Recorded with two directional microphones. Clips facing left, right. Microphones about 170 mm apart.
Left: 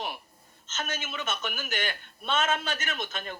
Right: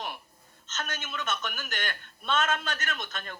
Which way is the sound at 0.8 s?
10° left (ahead or behind).